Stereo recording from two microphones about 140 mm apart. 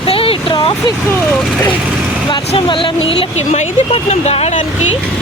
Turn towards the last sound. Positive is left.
turn(degrees=50)  # may be behind; listen again after turning